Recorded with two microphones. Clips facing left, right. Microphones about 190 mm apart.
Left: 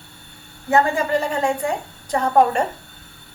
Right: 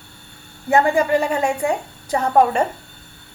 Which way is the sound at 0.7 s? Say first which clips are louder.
Right 2 dB; 10° right (ahead or behind).